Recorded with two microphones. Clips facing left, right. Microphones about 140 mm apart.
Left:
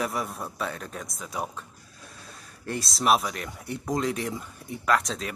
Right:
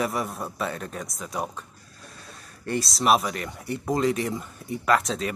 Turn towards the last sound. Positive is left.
turn(degrees=0)  # may be behind; listen again after turning